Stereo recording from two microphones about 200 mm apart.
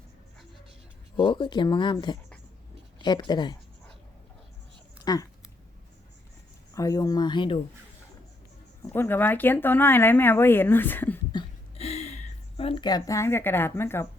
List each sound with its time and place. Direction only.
1.1 s speech: 25° left (ahead or behind)
5.1 s speech: 20° left (ahead or behind)
6.7 s speech: 15° left (ahead or behind)
8.8 s speech: 10° left (ahead or behind)
11.3 s a sound: 25° left (ahead or behind)